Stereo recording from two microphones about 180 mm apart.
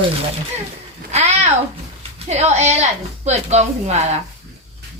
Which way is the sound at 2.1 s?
40° right (ahead or behind).